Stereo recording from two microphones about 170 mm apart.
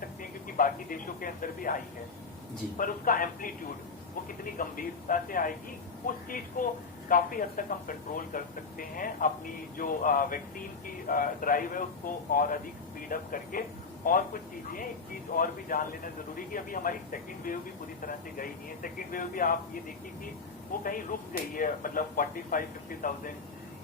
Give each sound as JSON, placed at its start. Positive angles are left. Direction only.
{"t": 0.2, "sound": "speech", "side_deg": 55}
{"t": 15.3, "sound": "speech", "side_deg": 55}
{"t": 20.8, "sound": "speech", "side_deg": 55}